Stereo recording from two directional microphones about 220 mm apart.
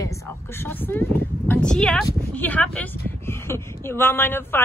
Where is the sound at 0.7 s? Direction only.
10° left (ahead or behind).